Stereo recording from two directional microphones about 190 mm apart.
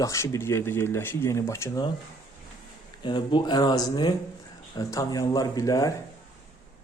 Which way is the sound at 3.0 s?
25° left (ahead or behind).